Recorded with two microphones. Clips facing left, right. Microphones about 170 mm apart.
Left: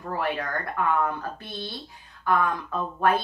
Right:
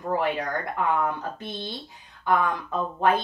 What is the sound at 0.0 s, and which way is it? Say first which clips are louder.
Speech: right 3 dB; 15° right (ahead or behind).